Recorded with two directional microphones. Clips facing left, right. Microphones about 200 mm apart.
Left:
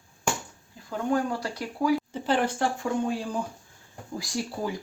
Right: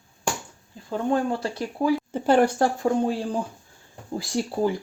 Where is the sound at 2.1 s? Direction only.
50° right (ahead or behind); by 4.5 s 30° right (ahead or behind).